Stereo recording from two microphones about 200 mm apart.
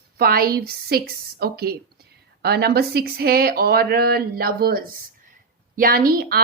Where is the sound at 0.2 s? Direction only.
50° right (ahead or behind).